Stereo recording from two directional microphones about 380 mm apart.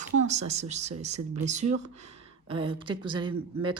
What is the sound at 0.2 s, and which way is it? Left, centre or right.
Speech, centre.